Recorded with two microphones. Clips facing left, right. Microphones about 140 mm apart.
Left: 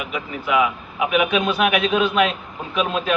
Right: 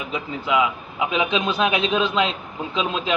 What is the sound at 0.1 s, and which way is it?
A man's voice, 25° right (ahead or behind).